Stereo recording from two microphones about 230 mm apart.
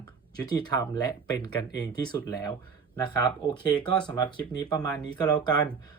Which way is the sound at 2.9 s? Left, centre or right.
Centre.